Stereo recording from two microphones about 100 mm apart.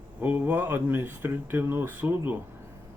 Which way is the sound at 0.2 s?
20° right (ahead or behind).